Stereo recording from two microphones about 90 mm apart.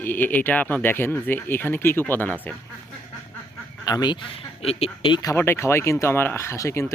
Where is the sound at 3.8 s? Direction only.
50° left (ahead or behind).